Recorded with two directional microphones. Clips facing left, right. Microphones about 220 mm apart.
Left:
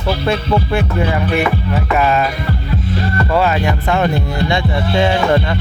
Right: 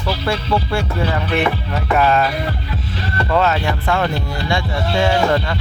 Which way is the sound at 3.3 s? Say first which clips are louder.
Left 1 dB; 10° left (ahead or behind).